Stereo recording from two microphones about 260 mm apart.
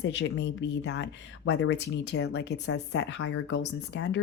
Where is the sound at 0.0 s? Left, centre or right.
Left.